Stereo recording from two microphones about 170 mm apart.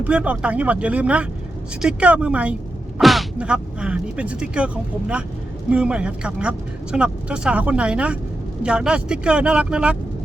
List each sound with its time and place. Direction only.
0.0 s speech: 5° right (ahead or behind)